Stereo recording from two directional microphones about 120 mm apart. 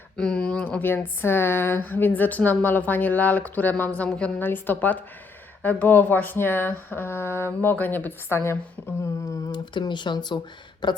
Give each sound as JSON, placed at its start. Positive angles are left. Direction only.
{"t": 0.2, "sound": "speech", "side_deg": 5}
{"t": 9.3, "sound": "speech", "side_deg": 35}